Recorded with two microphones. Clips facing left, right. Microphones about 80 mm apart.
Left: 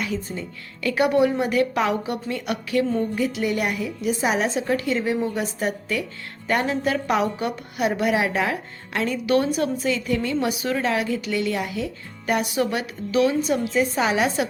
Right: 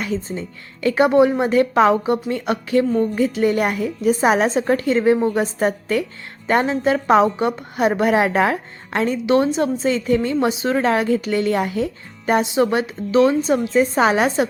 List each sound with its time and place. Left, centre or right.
0.0 s a woman's voice: right